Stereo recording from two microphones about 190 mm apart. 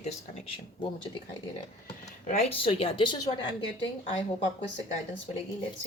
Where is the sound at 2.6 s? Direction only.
30° left (ahead or behind).